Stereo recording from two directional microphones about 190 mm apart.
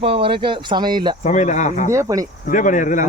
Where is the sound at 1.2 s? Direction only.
40° left (ahead or behind).